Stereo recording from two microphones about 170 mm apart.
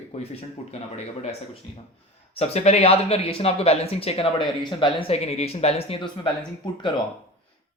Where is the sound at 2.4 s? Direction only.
40° left (ahead or behind).